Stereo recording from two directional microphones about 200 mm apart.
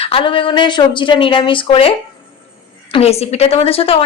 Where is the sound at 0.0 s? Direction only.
25° left (ahead or behind).